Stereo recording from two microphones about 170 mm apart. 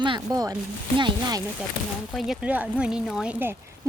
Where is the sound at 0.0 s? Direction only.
25° right (ahead or behind).